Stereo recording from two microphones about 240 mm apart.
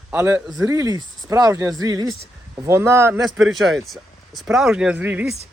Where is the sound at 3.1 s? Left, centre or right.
Centre.